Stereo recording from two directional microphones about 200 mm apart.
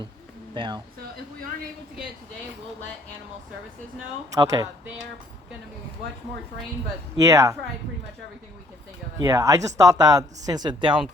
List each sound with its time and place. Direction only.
0.5 s speech: 25° right (ahead or behind)
4.4 s speech: 20° right (ahead or behind)
7.2 s speech: 15° right (ahead or behind)
9.1 s speech: 15° right (ahead or behind)